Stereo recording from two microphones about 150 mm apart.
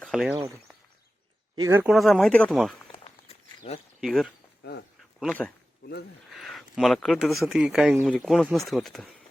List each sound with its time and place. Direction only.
0.0 s a sound: centre (ahead or behind)
1.5 s speech: 25° right (ahead or behind)
1.8 s speech: centre (ahead or behind)
2.9 s a sound: 35° left (ahead or behind)
4.0 s speech: centre (ahead or behind)
4.6 s speech: 90° left
5.2 s speech: 5° left (ahead or behind)
5.8 s speech: 90° left
6.3 s a sound: centre (ahead or behind)
7.4 s speech: 5° right (ahead or behind)